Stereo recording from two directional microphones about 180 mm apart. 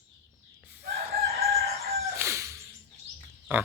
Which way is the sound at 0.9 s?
60° right (ahead or behind).